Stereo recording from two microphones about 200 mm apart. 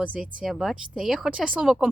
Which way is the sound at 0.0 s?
5° right (ahead or behind).